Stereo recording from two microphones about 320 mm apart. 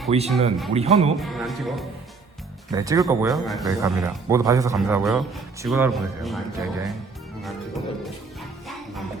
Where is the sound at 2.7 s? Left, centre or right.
Centre.